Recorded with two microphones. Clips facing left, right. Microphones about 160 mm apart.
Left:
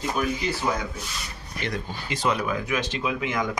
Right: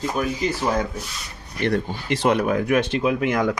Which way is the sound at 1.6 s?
60° right (ahead or behind).